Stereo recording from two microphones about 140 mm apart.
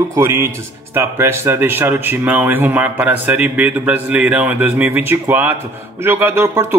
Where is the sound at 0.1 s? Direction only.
20° right (ahead or behind).